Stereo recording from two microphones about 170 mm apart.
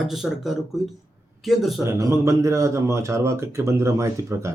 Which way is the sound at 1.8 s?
20° right (ahead or behind).